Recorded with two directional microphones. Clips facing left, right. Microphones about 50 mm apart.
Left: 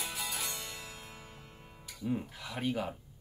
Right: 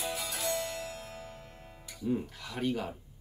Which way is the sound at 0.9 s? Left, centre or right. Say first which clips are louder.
Right 6 dB; centre.